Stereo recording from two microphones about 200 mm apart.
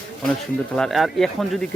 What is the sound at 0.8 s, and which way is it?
Speech, centre (ahead or behind).